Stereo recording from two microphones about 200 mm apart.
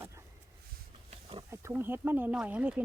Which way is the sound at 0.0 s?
15° right (ahead or behind).